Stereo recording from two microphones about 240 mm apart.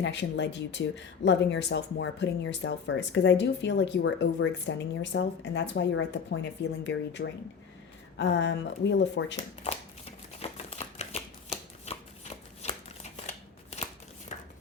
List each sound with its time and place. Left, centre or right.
0.0 s a woman's voice: left
10.4 s shuffling cards: left
12.6 s scissors: left
14.3 s a sound: left